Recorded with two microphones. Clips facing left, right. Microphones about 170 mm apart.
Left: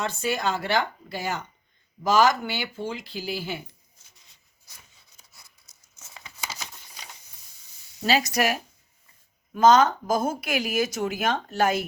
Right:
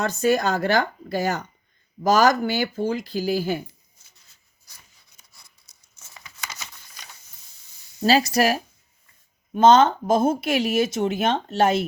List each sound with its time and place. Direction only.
0.0 s speech: 45° right (ahead or behind)
6.3 s a sound: 5° left (ahead or behind)
8.0 s speech: 35° right (ahead or behind)